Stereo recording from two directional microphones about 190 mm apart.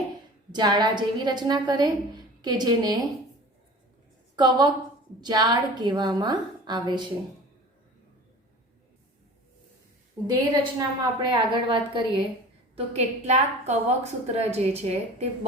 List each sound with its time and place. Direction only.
0.5 s a woman's voice: 25° right (ahead or behind)
4.4 s a woman's voice: 25° right (ahead or behind)
10.2 s a woman's voice: 25° right (ahead or behind)